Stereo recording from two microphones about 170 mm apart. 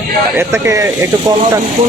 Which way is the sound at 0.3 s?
15° right (ahead or behind).